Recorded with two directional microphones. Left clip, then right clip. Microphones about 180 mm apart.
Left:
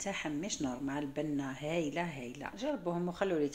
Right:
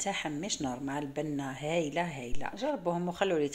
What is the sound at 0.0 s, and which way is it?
A woman's voice, 25° right (ahead or behind).